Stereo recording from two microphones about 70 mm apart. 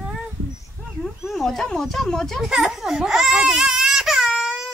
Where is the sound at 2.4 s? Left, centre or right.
Centre.